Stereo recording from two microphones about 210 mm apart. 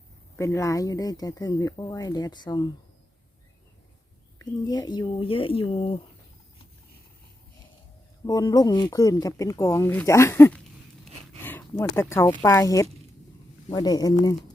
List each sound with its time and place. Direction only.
0.3 s speech: 15° left (ahead or behind)
4.4 s speech: 20° left (ahead or behind)
8.3 s speech: 20° left (ahead or behind)